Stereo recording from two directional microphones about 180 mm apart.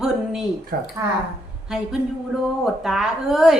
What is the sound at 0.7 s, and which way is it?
Speech, 60° right (ahead or behind).